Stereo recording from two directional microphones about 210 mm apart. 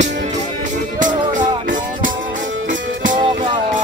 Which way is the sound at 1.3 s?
40° right (ahead or behind).